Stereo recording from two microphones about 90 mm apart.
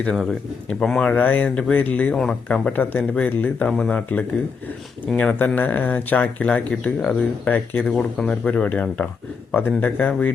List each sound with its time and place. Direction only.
0.0 s speech: 10° left (ahead or behind)
1.1 s speech: 20° left (ahead or behind)